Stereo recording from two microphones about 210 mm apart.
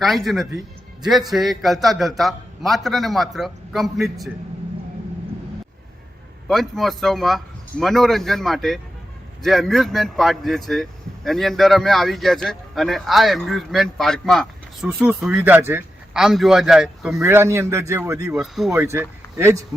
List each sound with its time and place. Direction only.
0.0 s a man's voice: centre (ahead or behind)
6.5 s a man's voice: centre (ahead or behind)
17.2 s speech: 15° right (ahead or behind)
18.3 s speech: centre (ahead or behind)